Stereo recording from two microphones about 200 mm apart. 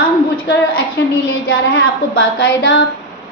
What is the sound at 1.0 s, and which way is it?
Child singing, 60° left (ahead or behind).